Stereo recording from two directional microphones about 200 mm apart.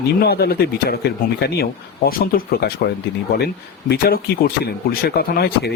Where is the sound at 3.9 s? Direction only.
50° left (ahead or behind).